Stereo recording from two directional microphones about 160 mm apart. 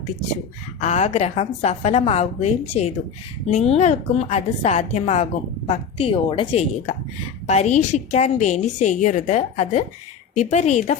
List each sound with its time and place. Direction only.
0.8 s a woman's voice: 45° left (ahead or behind)